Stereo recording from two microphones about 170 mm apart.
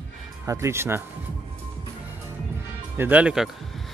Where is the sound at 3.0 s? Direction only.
10° right (ahead or behind).